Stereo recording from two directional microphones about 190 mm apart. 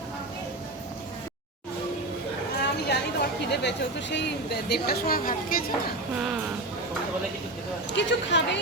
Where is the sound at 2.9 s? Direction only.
60° left (ahead or behind).